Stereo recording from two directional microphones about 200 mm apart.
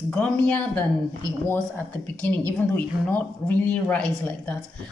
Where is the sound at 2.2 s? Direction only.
10° left (ahead or behind).